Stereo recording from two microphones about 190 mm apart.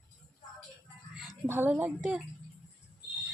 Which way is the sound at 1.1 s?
Centre (ahead or behind).